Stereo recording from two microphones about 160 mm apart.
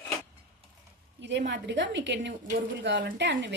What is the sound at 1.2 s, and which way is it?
A woman's voice, 90° right.